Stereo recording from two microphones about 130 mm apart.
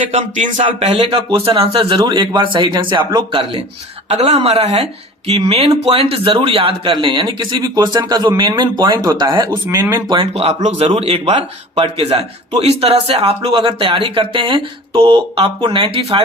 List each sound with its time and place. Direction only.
0.1 s a sound: 65° right (ahead or behind)
0.6 s speech: 50° right (ahead or behind); by 3.2 s 35° right (ahead or behind)
4.1 s a woman's voice: 55° right (ahead or behind); by 10.2 s 35° right (ahead or behind)
10.3 s a woman's voice: 55° right (ahead or behind)
10.8 s speech: 50° right (ahead or behind)